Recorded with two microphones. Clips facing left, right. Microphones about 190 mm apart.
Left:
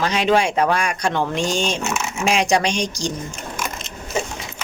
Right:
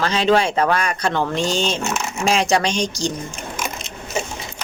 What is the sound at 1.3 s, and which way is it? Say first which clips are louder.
Speech: right 1 dB; 35° right (ahead or behind).